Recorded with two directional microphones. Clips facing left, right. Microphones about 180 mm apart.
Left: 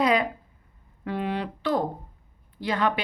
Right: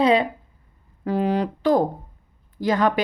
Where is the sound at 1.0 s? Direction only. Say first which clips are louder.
Right 7 dB; 40° right (ahead or behind).